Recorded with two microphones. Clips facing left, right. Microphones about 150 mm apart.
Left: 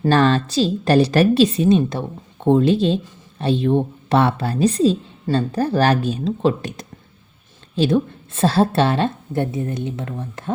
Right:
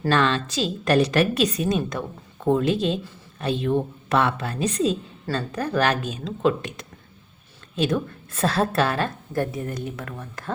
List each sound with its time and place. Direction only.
0.1 s a woman's voice: 40° left (ahead or behind)